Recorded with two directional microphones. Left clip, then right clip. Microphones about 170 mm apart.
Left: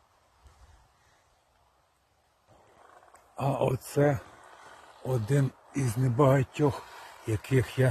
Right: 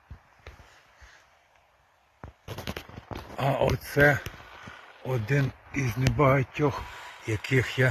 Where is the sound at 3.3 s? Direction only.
10° left (ahead or behind).